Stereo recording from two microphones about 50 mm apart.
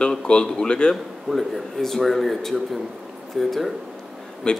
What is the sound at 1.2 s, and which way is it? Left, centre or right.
Speech, centre.